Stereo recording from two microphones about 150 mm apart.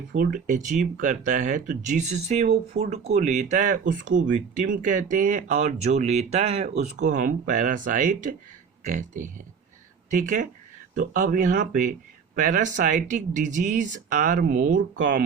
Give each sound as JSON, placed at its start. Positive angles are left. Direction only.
{"t": 0.2, "sound": "speech", "side_deg": -65}